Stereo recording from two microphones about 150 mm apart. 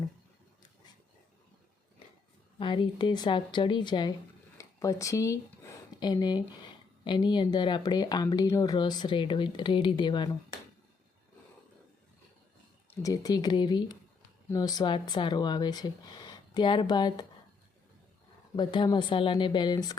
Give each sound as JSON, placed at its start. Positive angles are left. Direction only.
{"t": 2.6, "sound": "speech", "side_deg": 35}
{"t": 12.9, "sound": "speech", "side_deg": 25}
{"t": 18.5, "sound": "speech", "side_deg": 30}